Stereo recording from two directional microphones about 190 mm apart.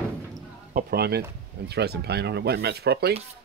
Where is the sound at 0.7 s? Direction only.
55° right (ahead or behind).